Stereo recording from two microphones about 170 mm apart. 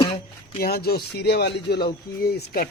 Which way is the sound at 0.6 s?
65° left (ahead or behind).